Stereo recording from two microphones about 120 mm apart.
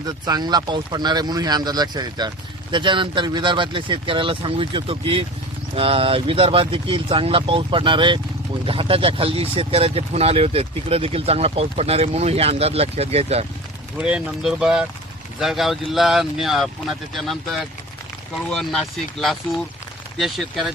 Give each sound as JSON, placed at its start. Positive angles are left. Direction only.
{"t": 0.3, "sound": "speech", "side_deg": -35}
{"t": 14.0, "sound": "speech", "side_deg": -10}